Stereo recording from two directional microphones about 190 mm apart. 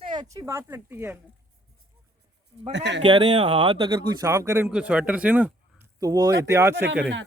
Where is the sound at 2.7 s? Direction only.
65° right (ahead or behind).